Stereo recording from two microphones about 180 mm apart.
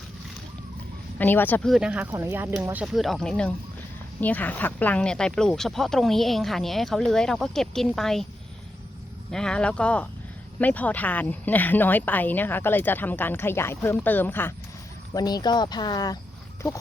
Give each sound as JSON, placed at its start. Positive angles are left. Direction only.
{"t": 1.2, "sound": "speech", "side_deg": 10}
{"t": 1.7, "sound": "speech", "side_deg": -5}
{"t": 9.3, "sound": "speech", "side_deg": 5}
{"t": 15.1, "sound": "speech", "side_deg": 20}